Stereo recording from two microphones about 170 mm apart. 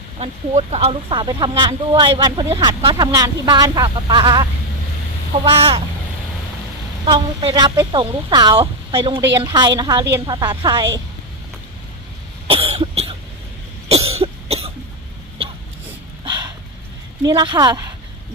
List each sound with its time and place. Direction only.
0.2 s speech: 40° right (ahead or behind)
5.5 s speech: 35° right (ahead or behind)
7.0 s speech: 30° right (ahead or behind)
12.5 s cough: 35° right (ahead or behind)
17.2 s speech: 25° right (ahead or behind)